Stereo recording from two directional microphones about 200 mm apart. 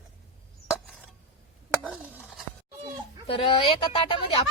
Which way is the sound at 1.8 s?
5° right (ahead or behind).